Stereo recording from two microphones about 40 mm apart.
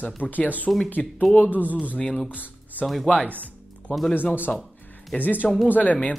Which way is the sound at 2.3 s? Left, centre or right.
Right.